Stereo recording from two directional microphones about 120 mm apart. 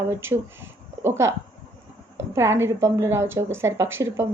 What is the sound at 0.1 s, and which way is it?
Speech, 20° right (ahead or behind).